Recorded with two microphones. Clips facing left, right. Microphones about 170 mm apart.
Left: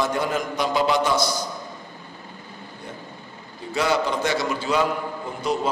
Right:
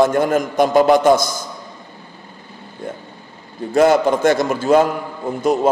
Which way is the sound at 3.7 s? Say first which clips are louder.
Right 9 dB; 50° right (ahead or behind).